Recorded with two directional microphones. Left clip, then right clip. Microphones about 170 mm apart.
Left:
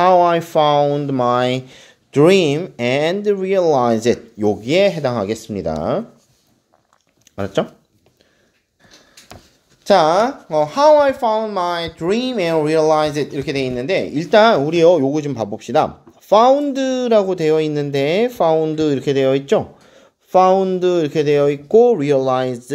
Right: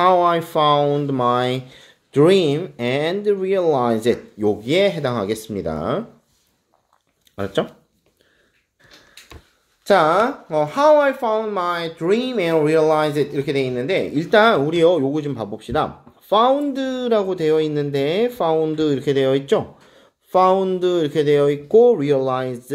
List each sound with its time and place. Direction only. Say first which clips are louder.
0.0 s speech: left 3 dB; 30° left (ahead or behind)
7.3 s speech: left 2 dB; 30° left (ahead or behind)
9.8 s speech: left 2 dB; 25° left (ahead or behind)
10.9 s speech: left 2 dB; 35° left (ahead or behind)
11.1 s speech: left 3 dB; 25° left (ahead or behind)